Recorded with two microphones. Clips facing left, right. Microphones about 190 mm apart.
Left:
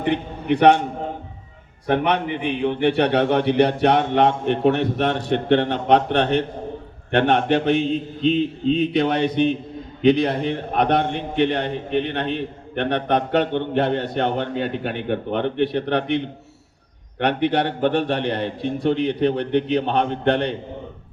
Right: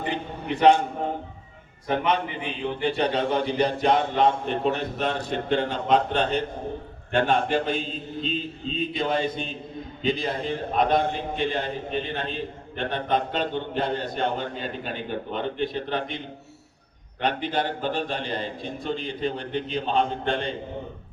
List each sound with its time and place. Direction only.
0.0 s a man's voice: 65° left (ahead or behind)
1.9 s a man's voice: 65° left (ahead or behind)